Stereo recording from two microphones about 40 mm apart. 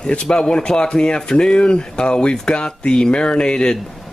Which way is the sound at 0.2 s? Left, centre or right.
Left.